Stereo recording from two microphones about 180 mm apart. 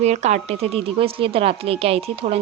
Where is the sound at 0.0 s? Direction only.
40° right (ahead or behind).